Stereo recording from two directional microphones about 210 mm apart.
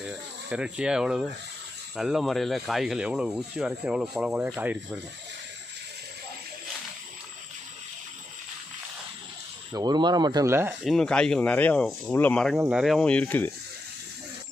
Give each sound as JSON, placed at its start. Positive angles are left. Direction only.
{"t": 0.0, "sound": "speech", "side_deg": -5}
{"t": 9.7, "sound": "speech", "side_deg": -20}
{"t": 10.8, "sound": "speech", "side_deg": 0}